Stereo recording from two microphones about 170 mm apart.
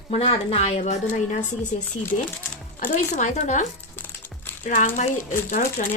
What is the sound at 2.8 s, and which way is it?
Speech, 50° left (ahead or behind).